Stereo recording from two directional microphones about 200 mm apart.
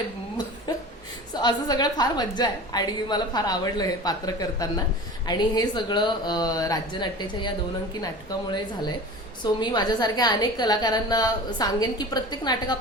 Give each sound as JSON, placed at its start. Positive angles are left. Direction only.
{"t": 0.7, "sound": "chuckle", "side_deg": 20}
{"t": 1.3, "sound": "a woman's voice", "side_deg": 20}